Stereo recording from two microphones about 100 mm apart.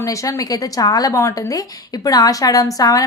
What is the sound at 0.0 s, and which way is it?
A woman's voice, 35° left (ahead or behind).